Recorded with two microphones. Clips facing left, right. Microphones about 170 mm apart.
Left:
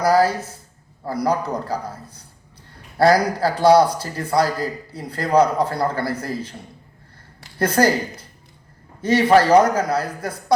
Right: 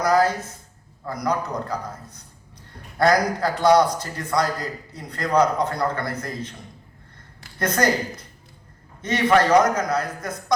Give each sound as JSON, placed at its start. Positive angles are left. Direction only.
{"t": 0.0, "sound": "a man's voice", "side_deg": 30}
{"t": 7.6, "sound": "a man's voice", "side_deg": 30}
{"t": 9.0, "sound": "a man's voice", "side_deg": 30}